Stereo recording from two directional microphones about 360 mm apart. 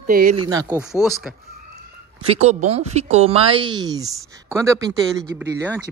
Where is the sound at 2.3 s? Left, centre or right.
Centre.